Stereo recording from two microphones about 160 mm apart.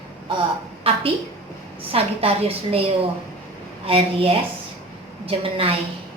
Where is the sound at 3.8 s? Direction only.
35° right (ahead or behind).